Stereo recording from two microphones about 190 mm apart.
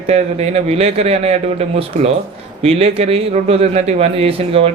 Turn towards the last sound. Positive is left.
turn(degrees=-30)  # may be behind; listen again after turning